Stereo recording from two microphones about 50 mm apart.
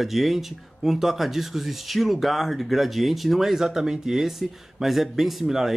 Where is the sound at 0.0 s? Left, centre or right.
Centre.